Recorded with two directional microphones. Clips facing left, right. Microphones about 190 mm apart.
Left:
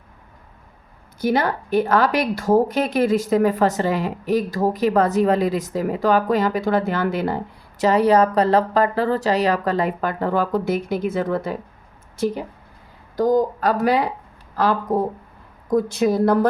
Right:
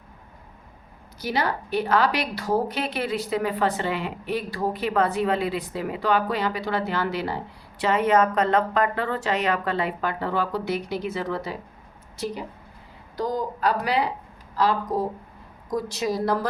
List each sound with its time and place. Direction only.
1.2 s a woman's voice: 50° left (ahead or behind)
7.8 s a woman's voice: 40° left (ahead or behind); by 16.5 s 55° left (ahead or behind)